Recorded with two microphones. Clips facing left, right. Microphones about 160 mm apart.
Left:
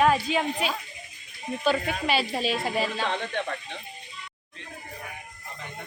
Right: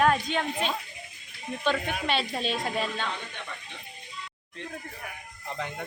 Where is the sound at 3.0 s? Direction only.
70° left (ahead or behind).